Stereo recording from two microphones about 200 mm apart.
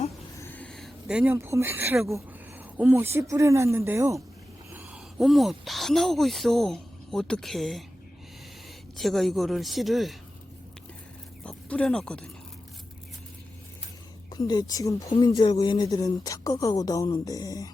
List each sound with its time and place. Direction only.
0.3 s a sound: 10° left (ahead or behind); by 2.1 s 5° right (ahead or behind)
2.1 s speech: 10° right (ahead or behind)
9.0 s a man's voice: centre (ahead or behind)
11.4 s speech: 5° left (ahead or behind)
14.3 s speech: 20° left (ahead or behind)